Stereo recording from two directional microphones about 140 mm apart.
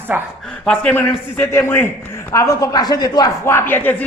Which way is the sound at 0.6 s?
5° left (ahead or behind).